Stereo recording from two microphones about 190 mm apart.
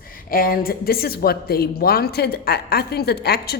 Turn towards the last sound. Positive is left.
turn(degrees=55)  # may be behind; listen again after turning